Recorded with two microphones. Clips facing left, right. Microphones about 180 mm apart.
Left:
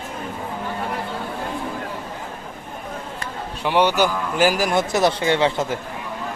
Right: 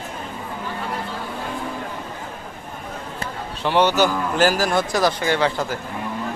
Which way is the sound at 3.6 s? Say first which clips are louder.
Right 1 dB; 10° left (ahead or behind).